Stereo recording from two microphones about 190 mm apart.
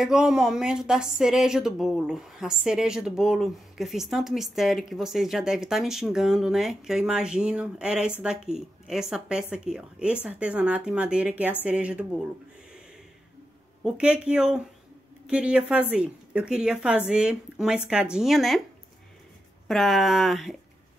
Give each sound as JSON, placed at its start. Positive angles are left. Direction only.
{"t": 0.0, "sound": "a woman's voice", "side_deg": 0}
{"t": 13.8, "sound": "speech", "side_deg": -5}
{"t": 19.7, "sound": "speech", "side_deg": 0}